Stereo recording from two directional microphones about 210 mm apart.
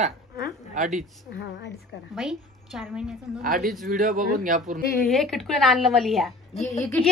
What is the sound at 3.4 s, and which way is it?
A man's voice, 45° right (ahead or behind).